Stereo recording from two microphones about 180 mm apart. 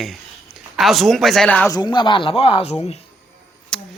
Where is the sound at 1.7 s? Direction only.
25° left (ahead or behind).